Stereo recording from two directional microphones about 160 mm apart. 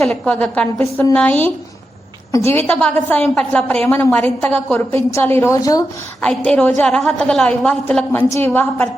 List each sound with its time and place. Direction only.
0.1 s a woman's voice: 5° left (ahead or behind)
6.2 s a woman's voice: 5° left (ahead or behind)